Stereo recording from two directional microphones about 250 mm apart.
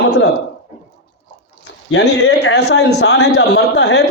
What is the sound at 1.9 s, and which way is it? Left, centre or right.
A man's voice, left.